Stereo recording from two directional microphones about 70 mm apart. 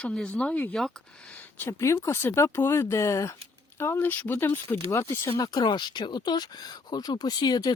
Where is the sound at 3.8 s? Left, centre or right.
Left.